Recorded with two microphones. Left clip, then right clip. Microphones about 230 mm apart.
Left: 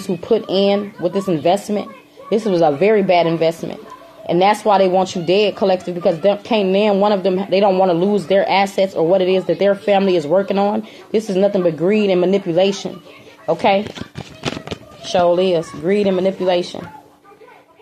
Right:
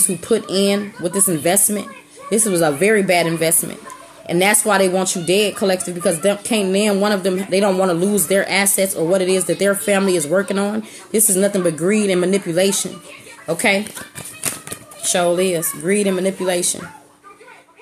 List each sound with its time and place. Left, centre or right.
0.0 s speech: right
15.0 s speech: right